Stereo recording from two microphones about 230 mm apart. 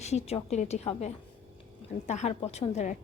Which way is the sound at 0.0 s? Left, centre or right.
Left.